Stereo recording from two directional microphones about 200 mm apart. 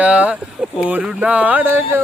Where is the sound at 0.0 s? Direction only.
5° right (ahead or behind).